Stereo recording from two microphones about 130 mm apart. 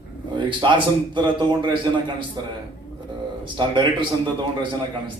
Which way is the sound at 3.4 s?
35° right (ahead or behind).